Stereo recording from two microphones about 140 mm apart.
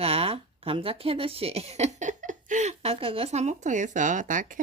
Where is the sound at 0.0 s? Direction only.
45° right (ahead or behind).